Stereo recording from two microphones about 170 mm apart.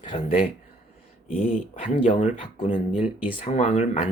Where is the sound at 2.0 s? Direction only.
45° left (ahead or behind).